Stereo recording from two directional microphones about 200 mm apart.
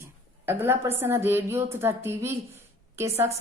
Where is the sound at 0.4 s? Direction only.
10° right (ahead or behind).